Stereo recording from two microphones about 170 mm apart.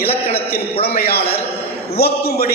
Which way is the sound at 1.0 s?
65° left (ahead or behind).